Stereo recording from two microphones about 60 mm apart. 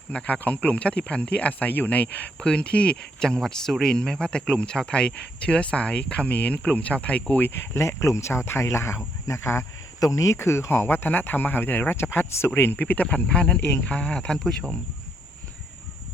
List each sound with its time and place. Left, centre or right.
0.1 s speech: centre
7.5 s speech: left
10.0 s speech: left
10.3 s speech: left; by 14.8 s centre